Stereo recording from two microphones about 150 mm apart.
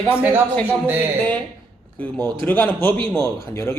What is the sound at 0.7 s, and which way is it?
Speech, 10° right (ahead or behind).